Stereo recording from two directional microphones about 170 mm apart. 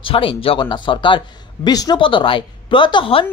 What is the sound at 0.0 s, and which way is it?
Speech, 30° left (ahead or behind).